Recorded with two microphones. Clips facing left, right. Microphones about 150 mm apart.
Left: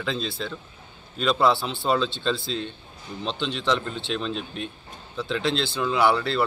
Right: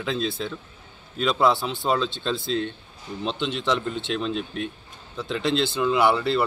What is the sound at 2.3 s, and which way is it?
Speech, 55° right (ahead or behind).